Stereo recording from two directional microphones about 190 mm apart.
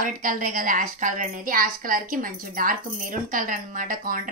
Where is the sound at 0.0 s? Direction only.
45° right (ahead or behind).